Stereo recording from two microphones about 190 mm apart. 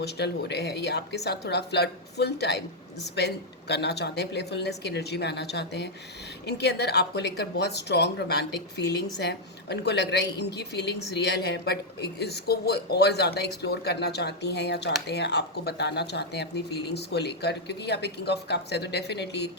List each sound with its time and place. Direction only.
0.0 s speech: 60° left (ahead or behind)